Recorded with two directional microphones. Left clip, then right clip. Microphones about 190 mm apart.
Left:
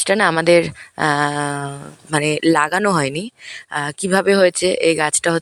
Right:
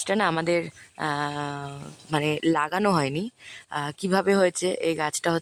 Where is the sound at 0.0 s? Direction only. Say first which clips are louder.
Left 9 dB; 20° left (ahead or behind).